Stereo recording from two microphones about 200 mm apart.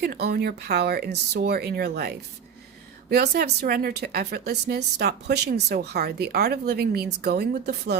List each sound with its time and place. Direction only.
0.0 s a woman's voice: 50° right (ahead or behind)